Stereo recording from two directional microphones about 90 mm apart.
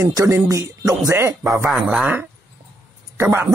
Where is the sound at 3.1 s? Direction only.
30° right (ahead or behind).